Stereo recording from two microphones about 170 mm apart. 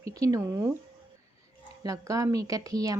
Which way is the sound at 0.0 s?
20° right (ahead or behind).